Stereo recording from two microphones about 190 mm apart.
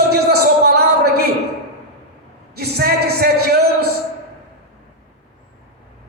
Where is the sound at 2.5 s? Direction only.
55° right (ahead or behind).